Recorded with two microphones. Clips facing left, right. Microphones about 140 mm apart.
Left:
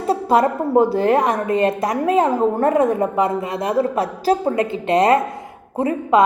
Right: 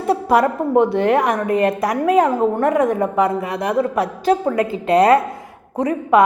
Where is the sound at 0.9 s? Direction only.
30° left (ahead or behind).